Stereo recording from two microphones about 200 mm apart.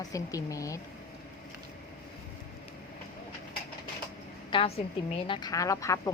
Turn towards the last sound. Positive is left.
turn(degrees=15)  # may be behind; listen again after turning